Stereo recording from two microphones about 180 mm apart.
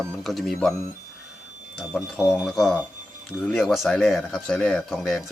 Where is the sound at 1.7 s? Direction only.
Centre (ahead or behind).